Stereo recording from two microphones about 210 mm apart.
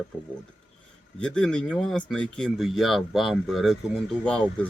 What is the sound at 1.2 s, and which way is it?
A man's voice, 5° left (ahead or behind).